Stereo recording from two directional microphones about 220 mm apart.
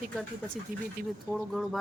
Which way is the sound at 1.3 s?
Centre (ahead or behind).